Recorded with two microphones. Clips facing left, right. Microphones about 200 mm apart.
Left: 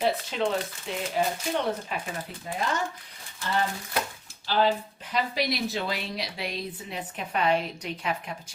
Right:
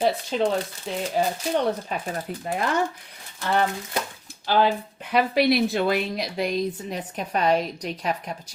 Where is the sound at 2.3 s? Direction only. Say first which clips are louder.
Right 9 dB; 50° right (ahead or behind).